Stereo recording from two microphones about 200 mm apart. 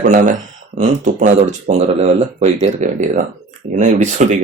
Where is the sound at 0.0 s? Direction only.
40° right (ahead or behind).